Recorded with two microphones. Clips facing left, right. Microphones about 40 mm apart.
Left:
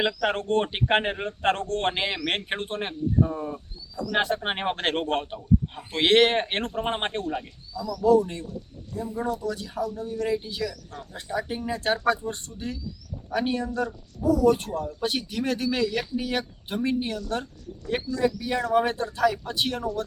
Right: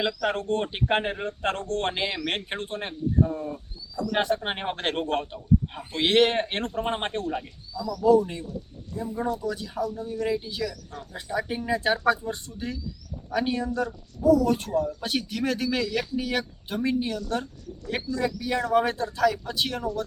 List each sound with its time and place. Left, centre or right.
0.0 s speech: left
2.6 s speech: left
3.2 s speech: centre
4.4 s speech: left
6.7 s speech: left
7.9 s speech: centre